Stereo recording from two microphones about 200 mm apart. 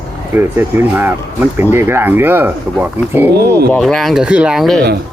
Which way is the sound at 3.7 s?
Centre (ahead or behind).